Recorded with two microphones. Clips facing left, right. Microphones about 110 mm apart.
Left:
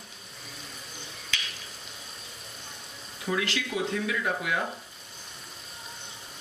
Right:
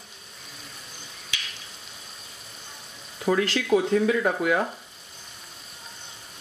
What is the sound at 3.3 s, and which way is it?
Speech, 45° right (ahead or behind).